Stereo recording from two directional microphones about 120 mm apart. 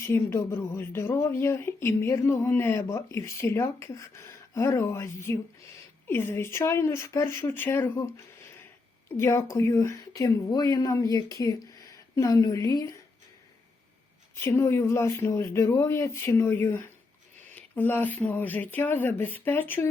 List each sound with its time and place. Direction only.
0.0 s speech: 20° left (ahead or behind)
14.3 s speech: 20° left (ahead or behind)